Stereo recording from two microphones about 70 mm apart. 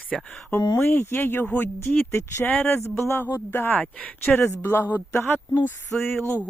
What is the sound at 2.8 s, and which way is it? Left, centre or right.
Speech, left.